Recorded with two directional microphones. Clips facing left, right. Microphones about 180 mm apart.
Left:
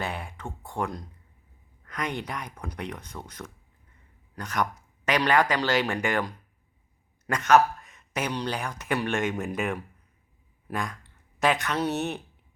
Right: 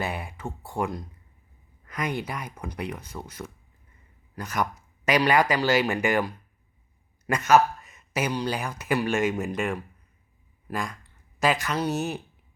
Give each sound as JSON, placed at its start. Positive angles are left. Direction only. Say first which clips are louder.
{"t": 0.0, "sound": "speech", "louder": "right 2 dB", "side_deg": -5}